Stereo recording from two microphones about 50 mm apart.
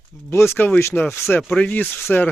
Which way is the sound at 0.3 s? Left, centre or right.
Left.